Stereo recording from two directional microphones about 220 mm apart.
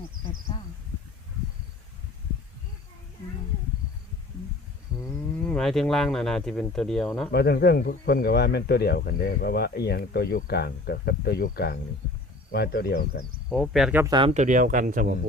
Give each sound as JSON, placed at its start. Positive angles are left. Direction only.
{"t": 5.0, "sound": "speech", "side_deg": 5}
{"t": 7.3, "sound": "speech", "side_deg": 45}
{"t": 13.5, "sound": "speech", "side_deg": 0}
{"t": 14.1, "sound": "speech", "side_deg": -25}